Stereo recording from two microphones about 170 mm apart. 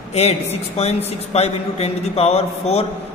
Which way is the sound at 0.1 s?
40° left (ahead or behind).